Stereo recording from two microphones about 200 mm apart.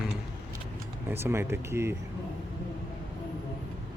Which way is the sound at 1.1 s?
10° right (ahead or behind).